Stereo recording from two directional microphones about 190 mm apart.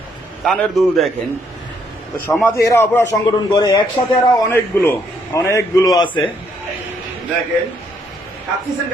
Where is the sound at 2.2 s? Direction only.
10° left (ahead or behind).